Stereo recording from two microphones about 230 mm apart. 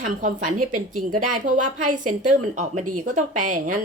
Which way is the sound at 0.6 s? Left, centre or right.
Right.